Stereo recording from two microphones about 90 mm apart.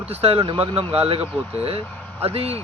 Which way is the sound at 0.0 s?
90° right.